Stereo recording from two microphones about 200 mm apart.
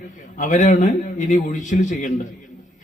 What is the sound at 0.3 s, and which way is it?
A man's voice, 40° left (ahead or behind).